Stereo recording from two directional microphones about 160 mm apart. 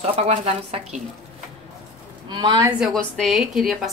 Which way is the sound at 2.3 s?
30° right (ahead or behind).